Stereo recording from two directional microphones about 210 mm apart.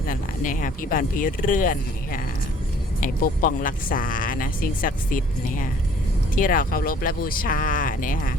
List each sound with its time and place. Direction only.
0.1 s speech: 40° left (ahead or behind)